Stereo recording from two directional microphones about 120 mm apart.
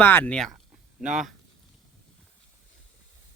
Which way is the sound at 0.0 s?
15° left (ahead or behind).